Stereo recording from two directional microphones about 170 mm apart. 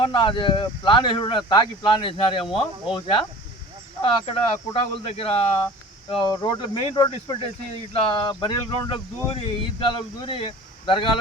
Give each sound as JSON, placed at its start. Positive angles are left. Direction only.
{"t": 0.0, "sound": "speech", "side_deg": 30}